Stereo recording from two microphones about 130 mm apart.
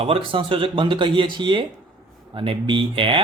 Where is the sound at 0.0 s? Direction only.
45° right (ahead or behind).